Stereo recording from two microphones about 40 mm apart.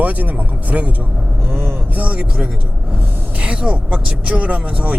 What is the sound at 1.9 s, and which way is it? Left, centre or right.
Speech, right.